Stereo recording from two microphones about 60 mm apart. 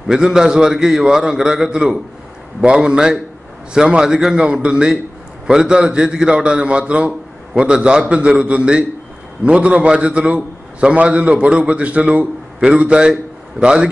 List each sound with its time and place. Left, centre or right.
0.1 s a man's voice: centre